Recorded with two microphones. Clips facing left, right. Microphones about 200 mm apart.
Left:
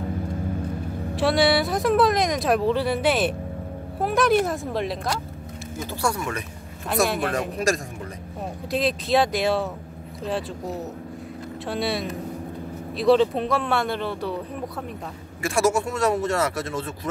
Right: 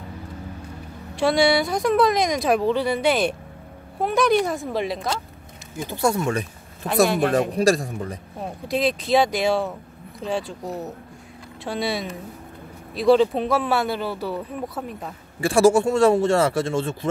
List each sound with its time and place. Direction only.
1.1 s speech: centre (ahead or behind)
5.9 s a man's voice: 20° right (ahead or behind)
8.6 s speech: centre (ahead or behind)
15.4 s speech: 30° right (ahead or behind)